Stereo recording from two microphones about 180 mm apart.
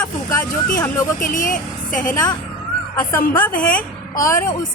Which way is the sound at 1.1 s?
45° left (ahead or behind).